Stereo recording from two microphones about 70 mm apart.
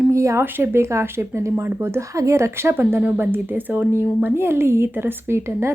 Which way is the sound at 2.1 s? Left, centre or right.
Right.